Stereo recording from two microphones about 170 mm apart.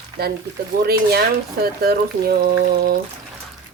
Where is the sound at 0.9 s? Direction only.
65° right (ahead or behind).